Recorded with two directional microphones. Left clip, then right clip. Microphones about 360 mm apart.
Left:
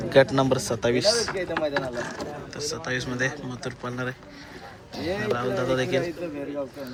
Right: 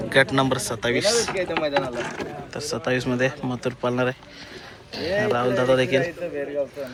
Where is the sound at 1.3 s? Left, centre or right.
Centre.